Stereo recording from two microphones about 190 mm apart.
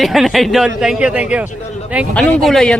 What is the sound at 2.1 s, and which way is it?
Speech, 5° left (ahead or behind).